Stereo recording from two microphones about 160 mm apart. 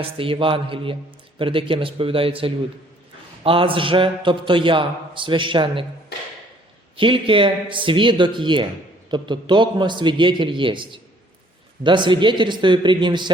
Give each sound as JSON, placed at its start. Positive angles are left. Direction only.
{"t": 0.0, "sound": "a man's voice", "side_deg": -35}
{"t": 6.9, "sound": "a man's voice", "side_deg": -35}